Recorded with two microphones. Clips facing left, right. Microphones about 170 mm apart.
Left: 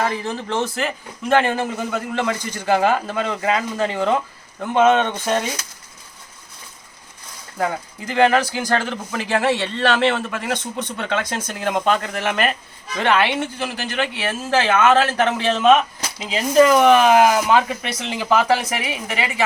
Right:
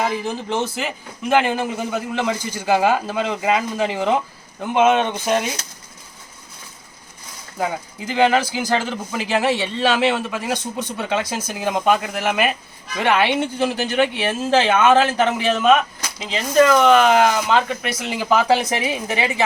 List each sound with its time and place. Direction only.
0.1 s a man's voice: 5° right (ahead or behind)
1.6 s a man's voice: 20° right (ahead or behind)
2.2 s speech: 10° right (ahead or behind)
7.6 s speech: 5° right (ahead or behind); by 17.7 s 10° left (ahead or behind)
17.8 s speech: 5° right (ahead or behind); by 19.2 s 20° right (ahead or behind)